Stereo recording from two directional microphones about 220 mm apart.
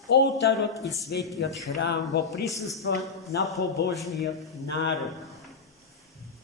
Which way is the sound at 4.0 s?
Centre (ahead or behind).